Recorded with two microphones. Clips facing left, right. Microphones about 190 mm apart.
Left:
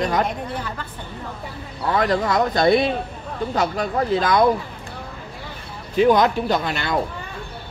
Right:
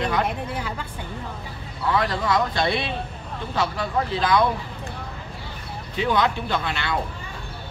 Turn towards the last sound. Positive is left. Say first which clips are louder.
# left 4 dB
turn(degrees=40)  # may be behind; listen again after turning